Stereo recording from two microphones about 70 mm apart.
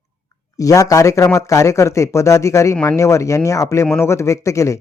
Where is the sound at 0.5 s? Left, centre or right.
Left.